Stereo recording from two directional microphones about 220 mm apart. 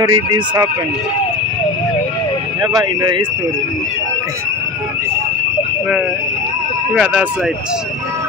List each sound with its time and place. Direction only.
0.0 s speech: 15° right (ahead or behind)
2.6 s speech: 20° right (ahead or behind)
6.9 s speech: 5° right (ahead or behind)